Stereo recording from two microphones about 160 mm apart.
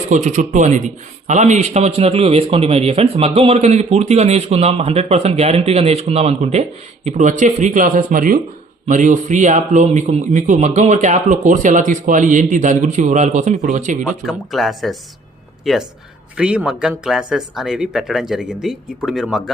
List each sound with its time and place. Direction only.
0.1 s speech: 50° right (ahead or behind)
14.0 s speech: centre (ahead or behind)